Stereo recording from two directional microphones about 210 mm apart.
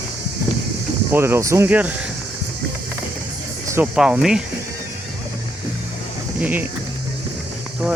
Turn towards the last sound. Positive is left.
turn(degrees=-5)  # may be behind; listen again after turning